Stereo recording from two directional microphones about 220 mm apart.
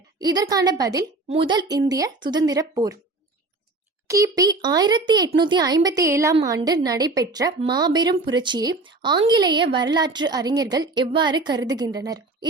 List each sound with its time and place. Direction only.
0.2 s a woman's voice: 15° right (ahead or behind)
4.0 s a woman's voice: 15° right (ahead or behind)